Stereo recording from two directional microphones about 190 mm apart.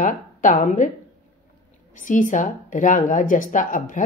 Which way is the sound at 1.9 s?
45° left (ahead or behind).